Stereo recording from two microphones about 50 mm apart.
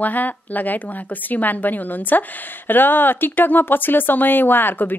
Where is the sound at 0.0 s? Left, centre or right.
Left.